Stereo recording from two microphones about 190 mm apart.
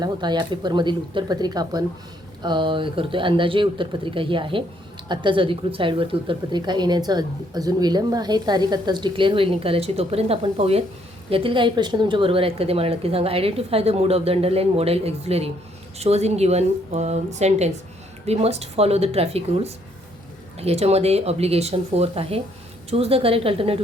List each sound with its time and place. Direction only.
0.0 s a woman's voice: 25° right (ahead or behind)